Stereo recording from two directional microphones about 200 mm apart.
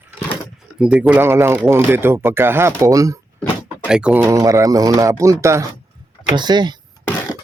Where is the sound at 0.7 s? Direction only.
5° right (ahead or behind).